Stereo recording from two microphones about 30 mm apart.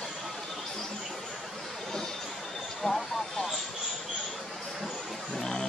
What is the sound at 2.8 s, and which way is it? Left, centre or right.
Vehicle, centre.